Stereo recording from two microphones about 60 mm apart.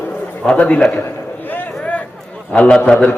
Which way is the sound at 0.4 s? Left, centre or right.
Left.